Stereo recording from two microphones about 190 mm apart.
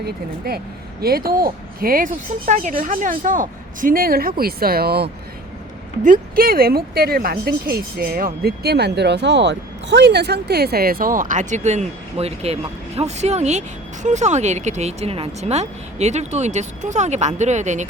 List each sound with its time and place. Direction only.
0.0 s speech: 55° right (ahead or behind)
6.1 s speech: 50° right (ahead or behind)